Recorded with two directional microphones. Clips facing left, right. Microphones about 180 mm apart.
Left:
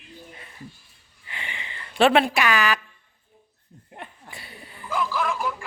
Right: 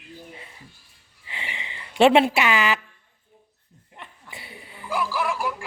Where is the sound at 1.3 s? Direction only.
25° right (ahead or behind).